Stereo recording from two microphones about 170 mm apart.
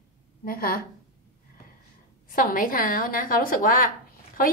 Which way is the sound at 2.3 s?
55° left (ahead or behind).